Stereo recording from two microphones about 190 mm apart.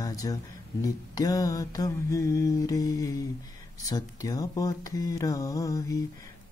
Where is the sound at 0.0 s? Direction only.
20° left (ahead or behind).